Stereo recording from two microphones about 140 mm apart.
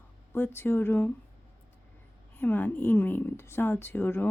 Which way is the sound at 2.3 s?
15° left (ahead or behind).